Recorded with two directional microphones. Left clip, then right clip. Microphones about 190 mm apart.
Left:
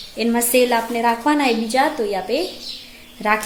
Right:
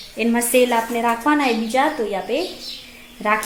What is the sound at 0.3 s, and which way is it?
A woman's voice, 5° left (ahead or behind).